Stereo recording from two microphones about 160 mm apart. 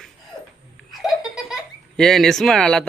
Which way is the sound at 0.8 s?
Centre (ahead or behind).